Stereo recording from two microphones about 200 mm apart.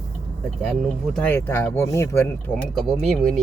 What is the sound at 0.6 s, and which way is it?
Speech, centre (ahead or behind).